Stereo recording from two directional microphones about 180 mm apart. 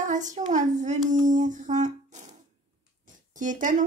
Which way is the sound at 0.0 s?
45° right (ahead or behind).